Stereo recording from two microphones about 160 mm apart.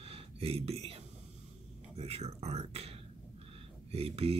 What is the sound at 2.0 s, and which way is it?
Speech, 40° right (ahead or behind).